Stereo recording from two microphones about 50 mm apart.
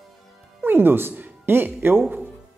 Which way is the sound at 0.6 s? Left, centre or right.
Right.